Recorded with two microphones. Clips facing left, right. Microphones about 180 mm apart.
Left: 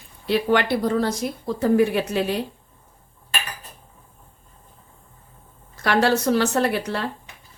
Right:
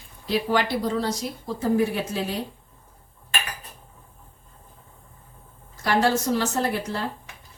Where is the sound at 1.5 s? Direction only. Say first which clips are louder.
Left 4 dB; 70° left (ahead or behind).